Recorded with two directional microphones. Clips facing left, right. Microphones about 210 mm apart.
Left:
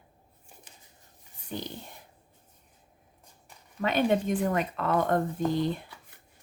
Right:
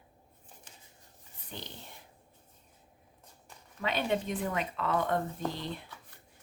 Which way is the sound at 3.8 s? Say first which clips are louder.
Left 6 dB; 50° left (ahead or behind).